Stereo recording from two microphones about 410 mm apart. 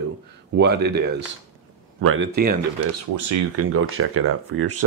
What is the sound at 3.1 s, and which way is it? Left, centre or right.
Speech, right.